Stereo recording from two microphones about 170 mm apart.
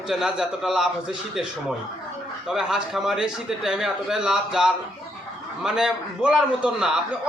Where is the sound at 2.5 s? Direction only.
5° right (ahead or behind).